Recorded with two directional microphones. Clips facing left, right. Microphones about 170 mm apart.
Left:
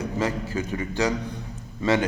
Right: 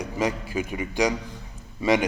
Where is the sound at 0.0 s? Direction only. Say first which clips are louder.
Even; 15° right (ahead or behind).